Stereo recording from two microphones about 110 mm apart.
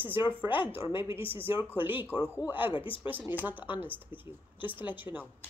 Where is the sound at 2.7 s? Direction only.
50° left (ahead or behind).